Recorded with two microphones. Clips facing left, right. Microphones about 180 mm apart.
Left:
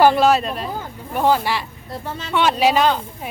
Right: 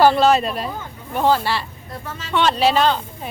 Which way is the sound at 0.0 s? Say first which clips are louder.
Even; 10° left (ahead or behind).